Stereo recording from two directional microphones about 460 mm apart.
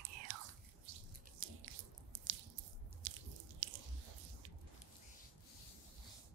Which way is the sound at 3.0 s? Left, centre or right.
Right.